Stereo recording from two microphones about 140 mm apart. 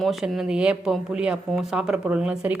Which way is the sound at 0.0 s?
Centre (ahead or behind).